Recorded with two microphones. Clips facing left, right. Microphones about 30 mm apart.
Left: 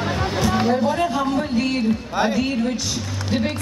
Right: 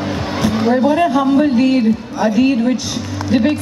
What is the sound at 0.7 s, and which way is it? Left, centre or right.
Speech, right.